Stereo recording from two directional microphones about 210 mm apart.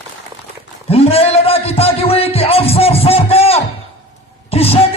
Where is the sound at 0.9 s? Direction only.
30° left (ahead or behind).